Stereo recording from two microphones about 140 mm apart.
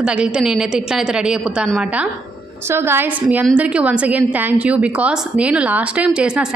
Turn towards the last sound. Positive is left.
turn(degrees=-5)  # may be behind; listen again after turning